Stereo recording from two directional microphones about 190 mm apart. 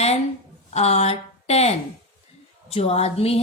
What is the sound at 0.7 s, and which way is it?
A woman's voice, 35° left (ahead or behind).